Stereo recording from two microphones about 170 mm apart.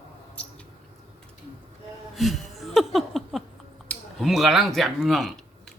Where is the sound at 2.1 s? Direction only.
Centre (ahead or behind).